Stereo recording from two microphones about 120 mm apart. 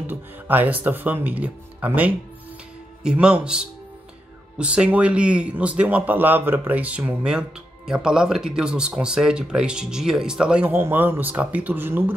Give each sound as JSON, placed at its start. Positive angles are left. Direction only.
{"t": 0.0, "sound": "speech", "side_deg": -15}